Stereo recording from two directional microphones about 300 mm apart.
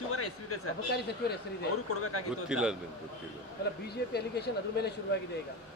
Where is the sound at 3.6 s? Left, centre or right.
Left.